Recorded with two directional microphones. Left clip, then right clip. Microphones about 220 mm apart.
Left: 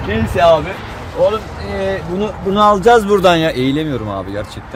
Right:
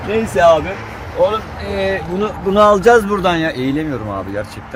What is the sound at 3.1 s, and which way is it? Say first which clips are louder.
Speech: left 5 dB; 40° left (ahead or behind).